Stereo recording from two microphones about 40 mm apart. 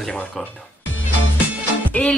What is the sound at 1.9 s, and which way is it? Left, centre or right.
Music, left.